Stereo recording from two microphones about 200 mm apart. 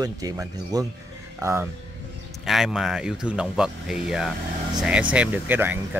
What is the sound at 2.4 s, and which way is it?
Speech, centre (ahead or behind).